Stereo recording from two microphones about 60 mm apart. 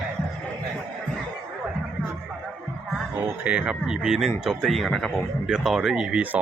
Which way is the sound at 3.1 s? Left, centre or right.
Right.